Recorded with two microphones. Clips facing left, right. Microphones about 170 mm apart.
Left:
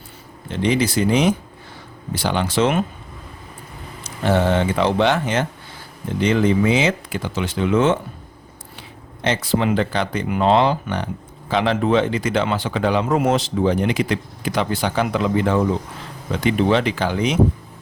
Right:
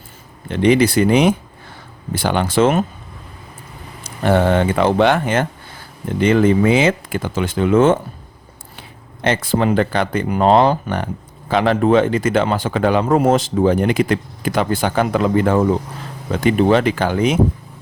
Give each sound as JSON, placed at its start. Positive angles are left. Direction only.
{"t": 0.4, "sound": "speech", "side_deg": -60}
{"t": 4.2, "sound": "speech", "side_deg": -55}
{"t": 9.2, "sound": "speech", "side_deg": -55}